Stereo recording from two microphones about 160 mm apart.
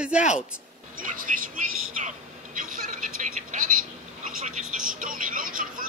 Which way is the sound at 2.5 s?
55° right (ahead or behind).